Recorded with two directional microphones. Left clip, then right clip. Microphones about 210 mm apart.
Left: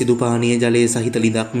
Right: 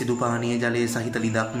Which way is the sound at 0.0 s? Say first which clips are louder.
Left 7 dB; 15° left (ahead or behind).